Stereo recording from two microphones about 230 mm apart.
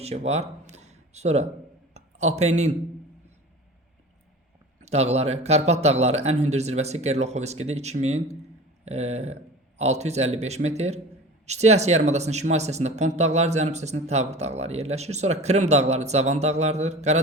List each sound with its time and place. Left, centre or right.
0.0 s a sound: right
1.9 s speech: right
4.8 s speech: right